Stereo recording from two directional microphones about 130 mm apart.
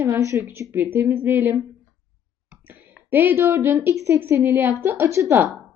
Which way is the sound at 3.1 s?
15° right (ahead or behind).